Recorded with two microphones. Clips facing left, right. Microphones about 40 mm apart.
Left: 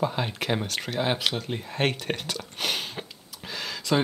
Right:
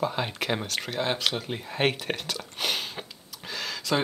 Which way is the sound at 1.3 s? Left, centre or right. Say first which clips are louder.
Even; centre.